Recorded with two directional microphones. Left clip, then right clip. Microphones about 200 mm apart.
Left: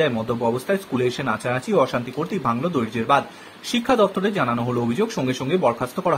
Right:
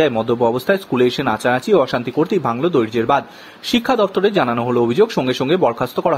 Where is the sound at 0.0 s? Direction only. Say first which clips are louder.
Right 6 dB; 40° right (ahead or behind).